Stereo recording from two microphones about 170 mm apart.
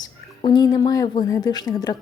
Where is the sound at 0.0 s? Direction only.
25° left (ahead or behind).